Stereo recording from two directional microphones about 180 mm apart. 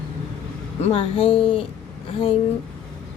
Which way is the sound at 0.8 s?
35° left (ahead or behind).